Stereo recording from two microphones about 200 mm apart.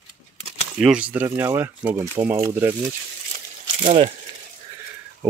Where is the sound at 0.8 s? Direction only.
5° right (ahead or behind).